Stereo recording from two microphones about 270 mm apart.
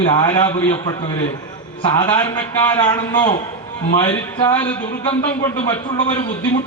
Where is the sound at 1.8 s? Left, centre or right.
Centre.